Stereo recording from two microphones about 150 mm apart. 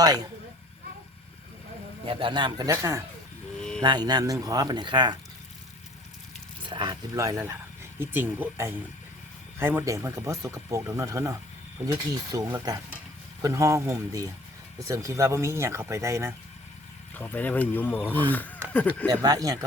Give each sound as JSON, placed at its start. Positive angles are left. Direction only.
{"t": 0.0, "sound": "speech", "side_deg": -25}
{"t": 2.0, "sound": "speech", "side_deg": -35}
{"t": 3.6, "sound": "a sound", "side_deg": 5}
{"t": 3.8, "sound": "speech", "side_deg": -30}
{"t": 6.7, "sound": "speech", "side_deg": -30}
{"t": 17.2, "sound": "speech", "side_deg": 10}
{"t": 19.2, "sound": "speech", "side_deg": -25}